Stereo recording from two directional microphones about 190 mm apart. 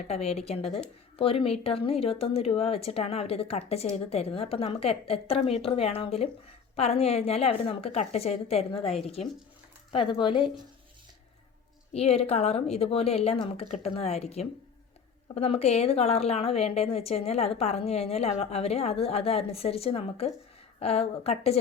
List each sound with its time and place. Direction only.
0.1 s a woman's voice: 35° left (ahead or behind)
9.9 s speech: 25° left (ahead or behind)
11.9 s a woman's voice: 30° left (ahead or behind)